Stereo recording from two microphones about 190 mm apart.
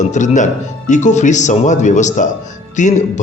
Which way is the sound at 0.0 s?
40° left (ahead or behind).